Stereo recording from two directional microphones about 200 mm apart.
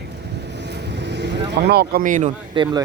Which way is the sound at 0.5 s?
60° right (ahead or behind).